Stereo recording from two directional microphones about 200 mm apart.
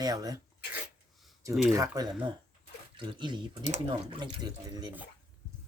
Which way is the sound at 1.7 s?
15° right (ahead or behind).